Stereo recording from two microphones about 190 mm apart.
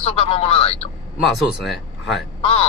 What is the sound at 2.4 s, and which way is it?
Speech, 30° left (ahead or behind).